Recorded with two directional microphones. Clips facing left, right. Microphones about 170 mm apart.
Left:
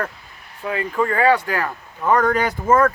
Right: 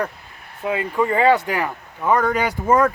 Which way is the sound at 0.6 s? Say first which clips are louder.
Right 1 dB; 20° right (ahead or behind).